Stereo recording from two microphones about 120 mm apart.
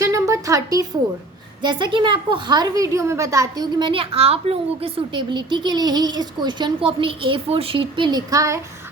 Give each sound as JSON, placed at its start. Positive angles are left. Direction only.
{"t": 0.0, "sound": "a sound", "side_deg": -25}
{"t": 1.6, "sound": "a woman's voice", "side_deg": -40}
{"t": 3.8, "sound": "a woman's voice", "side_deg": -45}